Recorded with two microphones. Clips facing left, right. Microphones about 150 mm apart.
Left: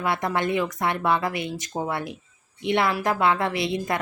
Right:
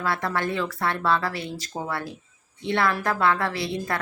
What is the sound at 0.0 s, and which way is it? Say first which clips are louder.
A woman's voice: left 2 dB; 20° left (ahead or behind).